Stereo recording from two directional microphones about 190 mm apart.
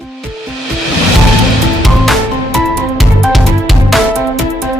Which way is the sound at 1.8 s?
Centre (ahead or behind).